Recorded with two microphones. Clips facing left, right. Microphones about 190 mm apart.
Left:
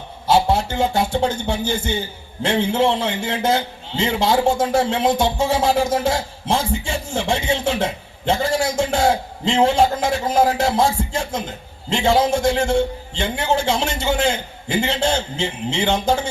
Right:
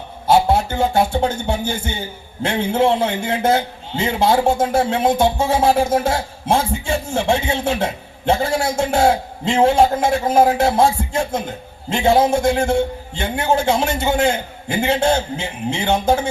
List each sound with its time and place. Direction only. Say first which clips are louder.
0.3 s a man's voice: right 2 dB; 55° right (ahead or behind)